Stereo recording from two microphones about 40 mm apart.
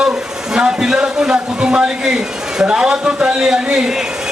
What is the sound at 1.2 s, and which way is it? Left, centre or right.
A man's voice, right.